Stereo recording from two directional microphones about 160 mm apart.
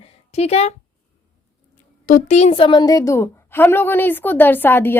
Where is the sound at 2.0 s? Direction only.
55° left (ahead or behind); by 5.0 s 15° left (ahead or behind).